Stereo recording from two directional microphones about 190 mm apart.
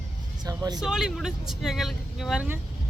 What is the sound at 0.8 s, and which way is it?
Speech, centre (ahead or behind).